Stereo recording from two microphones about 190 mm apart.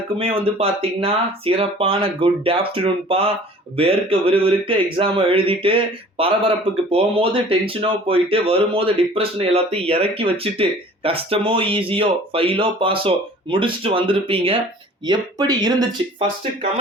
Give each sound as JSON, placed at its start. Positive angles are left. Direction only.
{"t": 0.2, "sound": "speech", "side_deg": -30}